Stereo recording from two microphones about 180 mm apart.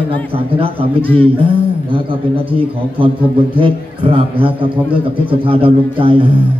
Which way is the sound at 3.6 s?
30° right (ahead or behind).